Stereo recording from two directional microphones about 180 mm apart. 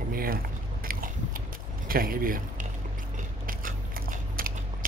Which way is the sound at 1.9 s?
55° right (ahead or behind).